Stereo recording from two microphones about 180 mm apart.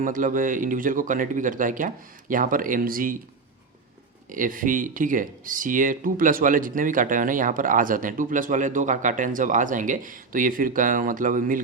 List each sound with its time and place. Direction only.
0.0 s speech: 45° right (ahead or behind)
4.3 s speech: 50° right (ahead or behind)